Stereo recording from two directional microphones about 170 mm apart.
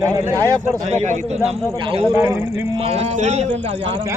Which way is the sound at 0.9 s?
40° right (ahead or behind).